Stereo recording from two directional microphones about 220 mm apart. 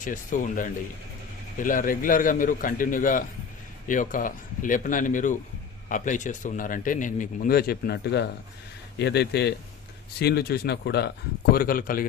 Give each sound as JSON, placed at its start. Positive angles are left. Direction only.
{"t": 0.0, "sound": "a man's voice", "side_deg": 35}